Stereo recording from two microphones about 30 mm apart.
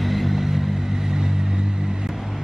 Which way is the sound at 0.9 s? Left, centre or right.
Right.